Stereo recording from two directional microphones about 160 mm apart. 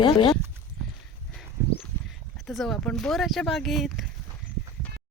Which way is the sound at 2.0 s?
Centre (ahead or behind).